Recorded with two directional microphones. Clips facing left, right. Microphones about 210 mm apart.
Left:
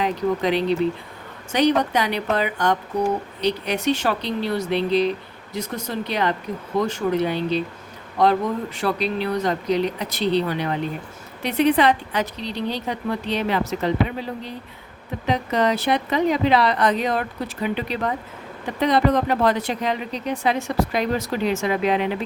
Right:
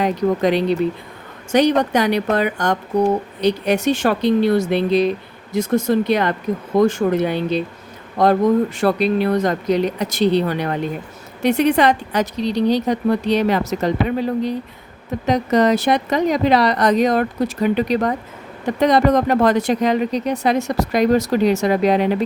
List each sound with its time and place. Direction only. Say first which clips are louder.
0.0 s speech: right 4 dB; 45° right (ahead or behind)
15.3 s speech: right 5 dB; 40° right (ahead or behind)